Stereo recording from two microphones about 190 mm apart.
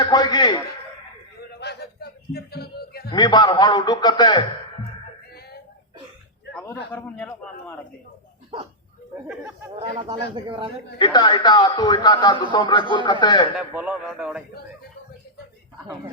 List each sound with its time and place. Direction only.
0.0 s speech: 20° left (ahead or behind)
1.5 s a sound: 60° left (ahead or behind)
3.1 s speech: 25° left (ahead or behind)
6.5 s a man's voice: 5° left (ahead or behind)
10.1 s speech: 25° right (ahead or behind)
10.9 s speech: 20° left (ahead or behind)
13.6 s a man's voice: 5° right (ahead or behind)